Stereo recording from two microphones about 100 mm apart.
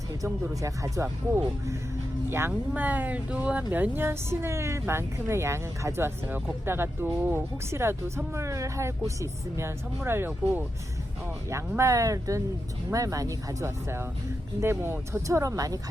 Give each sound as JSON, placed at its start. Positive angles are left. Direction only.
{"t": 0.4, "sound": "speech", "side_deg": -30}
{"t": 2.7, "sound": "speech", "side_deg": -15}
{"t": 11.8, "sound": "speech", "side_deg": -30}